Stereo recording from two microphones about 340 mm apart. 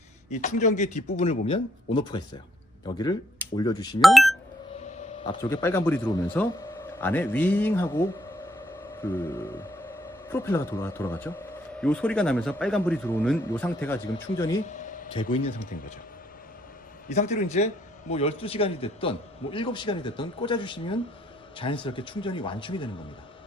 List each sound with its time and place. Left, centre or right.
0.3 s a man's voice: left
4.0 s speech: centre
4.9 s a man's voice: centre
14.6 s speech: left
17.1 s a man's voice: centre